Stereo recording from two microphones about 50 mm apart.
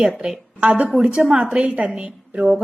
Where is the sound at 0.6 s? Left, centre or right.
Right.